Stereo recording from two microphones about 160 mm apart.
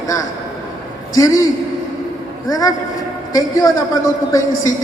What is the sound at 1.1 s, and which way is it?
Speech, 20° left (ahead or behind).